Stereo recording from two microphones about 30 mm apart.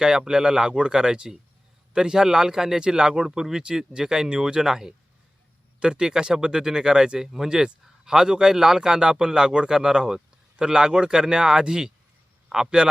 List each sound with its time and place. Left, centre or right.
0.0 s speech: right
2.8 s speech: right
5.8 s a man's voice: right